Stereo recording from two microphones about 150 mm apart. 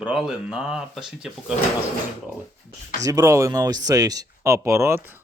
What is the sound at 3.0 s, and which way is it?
Speech, 20° right (ahead or behind).